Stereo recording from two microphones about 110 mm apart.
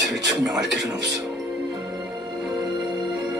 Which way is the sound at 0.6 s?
5° right (ahead or behind).